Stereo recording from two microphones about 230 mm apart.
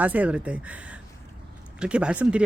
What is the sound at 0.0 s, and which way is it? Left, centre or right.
Speech, centre.